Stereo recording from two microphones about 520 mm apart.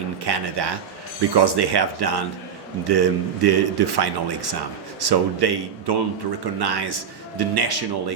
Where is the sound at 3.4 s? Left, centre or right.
Right.